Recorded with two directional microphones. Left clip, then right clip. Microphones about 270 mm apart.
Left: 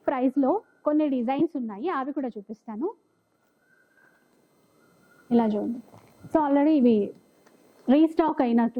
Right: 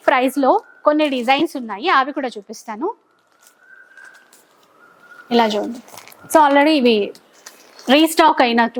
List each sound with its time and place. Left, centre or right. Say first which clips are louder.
0.0 s speech: right 10 dB; centre
0.5 s a sound: right 11 dB; centre
0.9 s a woman's voice: right 9 dB; centre
5.3 s a woman's voice: right 9 dB; centre